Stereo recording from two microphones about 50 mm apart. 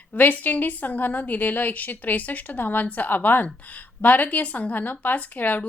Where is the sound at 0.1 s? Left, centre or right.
Left.